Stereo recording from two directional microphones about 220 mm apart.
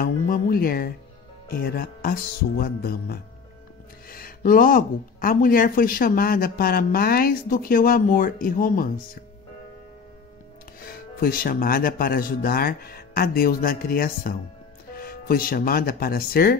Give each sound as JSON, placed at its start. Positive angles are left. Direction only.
{"t": 0.0, "sound": "speech", "side_deg": 40}
{"t": 10.9, "sound": "speech", "side_deg": 40}